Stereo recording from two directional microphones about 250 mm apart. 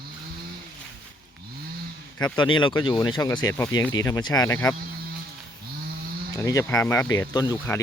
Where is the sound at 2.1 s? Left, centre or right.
Centre.